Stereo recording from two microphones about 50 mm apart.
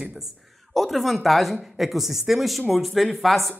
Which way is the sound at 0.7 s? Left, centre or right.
Centre.